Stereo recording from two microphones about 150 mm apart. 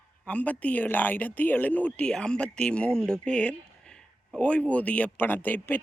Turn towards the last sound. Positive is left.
turn(degrees=10)  # may be behind; listen again after turning